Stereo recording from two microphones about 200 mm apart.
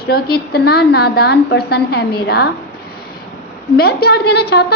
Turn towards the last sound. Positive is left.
turn(degrees=55)  # may be behind; listen again after turning